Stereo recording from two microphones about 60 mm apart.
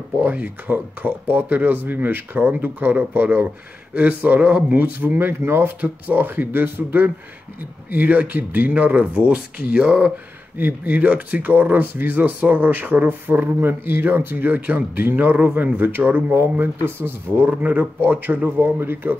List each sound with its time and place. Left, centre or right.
0.2 s speech: right
5.4 s speech: right
5.8 s speech: right
16.3 s speech: right
17.5 s speech: right